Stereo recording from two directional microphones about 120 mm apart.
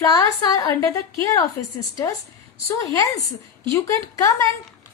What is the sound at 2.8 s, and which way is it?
Speech, 30° left (ahead or behind).